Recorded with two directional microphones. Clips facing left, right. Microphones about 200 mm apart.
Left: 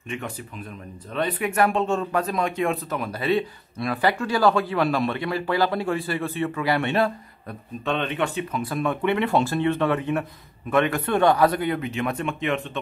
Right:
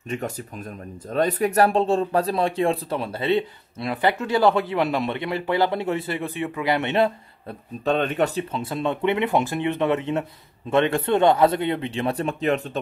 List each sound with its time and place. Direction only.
0.1 s speech: 40° right (ahead or behind); by 7.5 s 20° right (ahead or behind)
7.8 s speech: 40° right (ahead or behind)
8.5 s speech: 25° right (ahead or behind)